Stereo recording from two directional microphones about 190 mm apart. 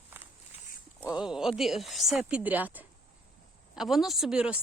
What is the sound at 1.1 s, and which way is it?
Speech, 5° right (ahead or behind).